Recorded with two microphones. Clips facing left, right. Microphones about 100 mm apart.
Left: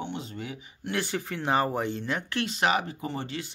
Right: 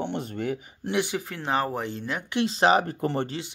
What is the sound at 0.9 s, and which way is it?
Speech, 15° right (ahead or behind).